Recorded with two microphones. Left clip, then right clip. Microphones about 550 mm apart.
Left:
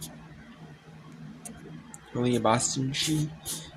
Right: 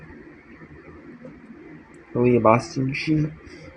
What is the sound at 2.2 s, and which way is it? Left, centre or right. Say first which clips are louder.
Speech: right 8 dB; left.